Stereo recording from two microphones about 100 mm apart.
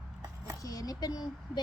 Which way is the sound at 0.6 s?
40° left (ahead or behind).